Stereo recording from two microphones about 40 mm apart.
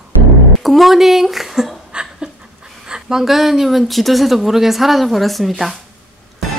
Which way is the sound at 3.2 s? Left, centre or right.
Centre.